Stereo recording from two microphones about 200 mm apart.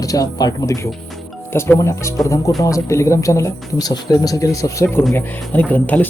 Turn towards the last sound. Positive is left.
turn(degrees=10)  # may be behind; listen again after turning